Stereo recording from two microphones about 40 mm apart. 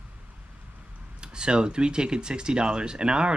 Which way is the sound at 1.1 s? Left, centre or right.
Right.